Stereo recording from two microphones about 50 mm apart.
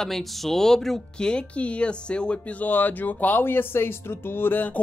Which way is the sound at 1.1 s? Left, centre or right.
Centre.